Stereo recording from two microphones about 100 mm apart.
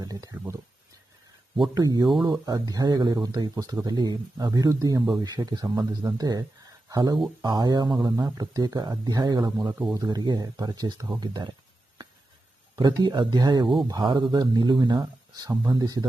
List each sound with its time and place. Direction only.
0.0 s speech: 40° right (ahead or behind)
1.7 s speech: 40° right (ahead or behind)
3.5 s speech: 35° right (ahead or behind)
4.9 s speech: centre (ahead or behind)
5.2 s speech: 45° right (ahead or behind)
12.7 s speech: 45° right (ahead or behind)